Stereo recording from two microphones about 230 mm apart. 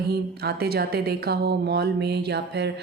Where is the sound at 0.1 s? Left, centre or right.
Right.